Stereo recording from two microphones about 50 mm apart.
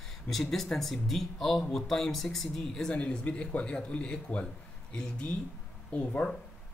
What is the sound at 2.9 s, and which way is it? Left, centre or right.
Speech, left.